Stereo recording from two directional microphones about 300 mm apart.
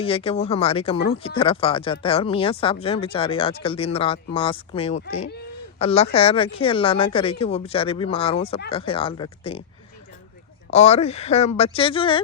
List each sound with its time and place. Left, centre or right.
0.0 s speech: centre
10.7 s speech: left